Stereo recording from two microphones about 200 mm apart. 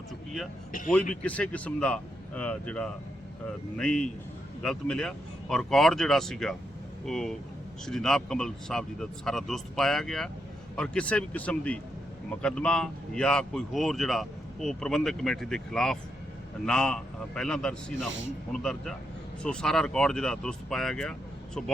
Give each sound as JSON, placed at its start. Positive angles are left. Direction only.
{"t": 1.1, "sound": "speech", "side_deg": 5}
{"t": 17.9, "sound": "a man's voice", "side_deg": -70}
{"t": 18.5, "sound": "speech", "side_deg": 5}